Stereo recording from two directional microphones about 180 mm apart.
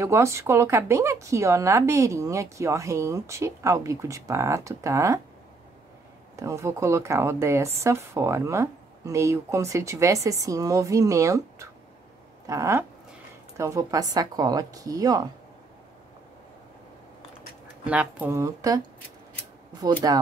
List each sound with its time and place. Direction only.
0.0 s speech: 15° right (ahead or behind)
6.3 s a woman's voice: 15° right (ahead or behind)
17.8 s speech: 10° right (ahead or behind)
19.8 s a woman's voice: 20° right (ahead or behind)